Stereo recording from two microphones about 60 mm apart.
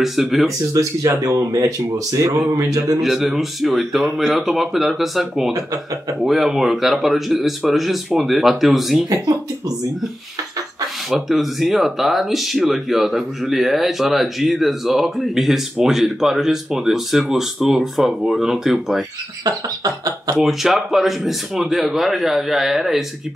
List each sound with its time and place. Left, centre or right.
0.0 s speech: centre
0.7 s speech: right
3.0 s speech: centre
9.1 s speech: right
11.1 s speech: centre
19.4 s a sound: right
20.3 s speech: centre